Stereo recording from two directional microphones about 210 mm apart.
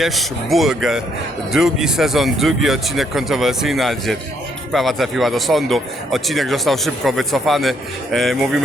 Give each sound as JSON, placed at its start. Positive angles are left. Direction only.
{"t": 0.0, "sound": "speech", "side_deg": 0}